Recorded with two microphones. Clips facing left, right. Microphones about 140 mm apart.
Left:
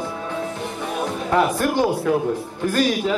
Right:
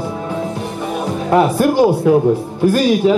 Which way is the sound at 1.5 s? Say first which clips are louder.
Right 7 dB; 20° right (ahead or behind).